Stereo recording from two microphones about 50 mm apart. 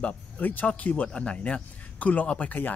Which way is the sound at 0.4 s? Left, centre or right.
Left.